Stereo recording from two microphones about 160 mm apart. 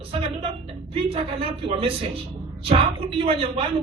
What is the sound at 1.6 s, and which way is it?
A man's voice, 35° right (ahead or behind).